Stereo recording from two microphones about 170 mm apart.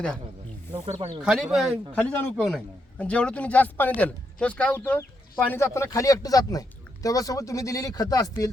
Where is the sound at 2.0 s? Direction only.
10° left (ahead or behind).